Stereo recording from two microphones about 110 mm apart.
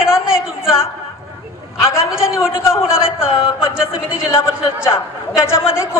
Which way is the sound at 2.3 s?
25° left (ahead or behind).